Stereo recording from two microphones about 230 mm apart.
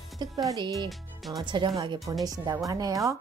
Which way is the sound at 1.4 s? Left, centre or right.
Centre.